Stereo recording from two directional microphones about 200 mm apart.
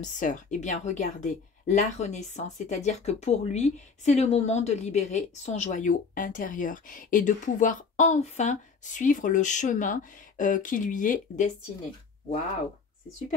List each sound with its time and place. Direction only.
0.0 s a woman's voice: 40° left (ahead or behind)